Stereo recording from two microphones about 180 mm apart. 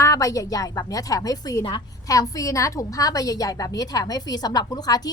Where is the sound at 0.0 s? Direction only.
20° left (ahead or behind).